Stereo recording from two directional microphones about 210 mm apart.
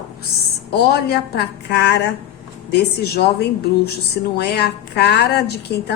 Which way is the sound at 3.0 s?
50° left (ahead or behind).